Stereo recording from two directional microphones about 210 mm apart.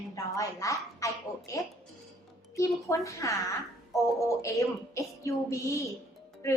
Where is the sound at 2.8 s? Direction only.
15° left (ahead or behind).